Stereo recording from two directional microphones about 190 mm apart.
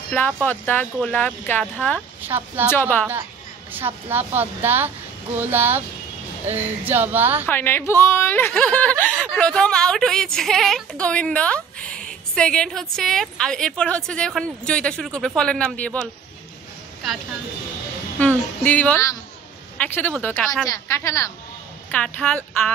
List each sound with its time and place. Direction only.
0.4 s a woman's voice: 10° left (ahead or behind)
2.0 s speech: 10° right (ahead or behind)
2.7 s a woman's voice: 10° left (ahead or behind)
3.7 s speech: 10° right (ahead or behind)
7.4 s a woman's voice: 10° left (ahead or behind)
18.2 s a woman's voice: 10° left (ahead or behind)